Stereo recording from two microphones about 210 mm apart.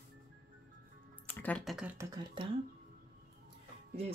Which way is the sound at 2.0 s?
15° right (ahead or behind).